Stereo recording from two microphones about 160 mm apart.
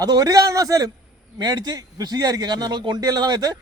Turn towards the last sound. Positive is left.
turn(degrees=-25)  # may be behind; listen again after turning